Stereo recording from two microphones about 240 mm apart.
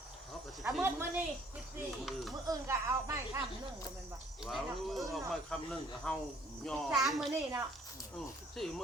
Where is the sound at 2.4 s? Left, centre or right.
Centre.